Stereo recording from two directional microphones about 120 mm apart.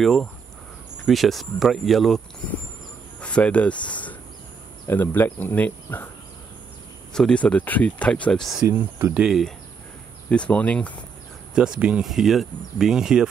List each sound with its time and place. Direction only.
0.0 s speech: 5° left (ahead or behind)
7.2 s speech: 5° left (ahead or behind)
8.6 s speech: 20° right (ahead or behind)
9.1 s speech: 5° right (ahead or behind)
10.3 s speech: 10° left (ahead or behind)
11.5 s speech: 5° right (ahead or behind)